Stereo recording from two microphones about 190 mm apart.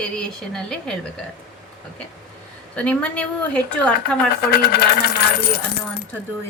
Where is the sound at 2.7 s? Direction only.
5° left (ahead or behind).